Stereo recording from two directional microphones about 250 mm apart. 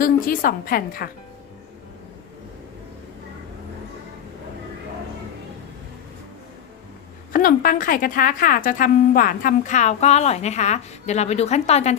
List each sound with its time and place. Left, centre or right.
0.0 s a woman's voice: left
7.3 s a woman's voice: left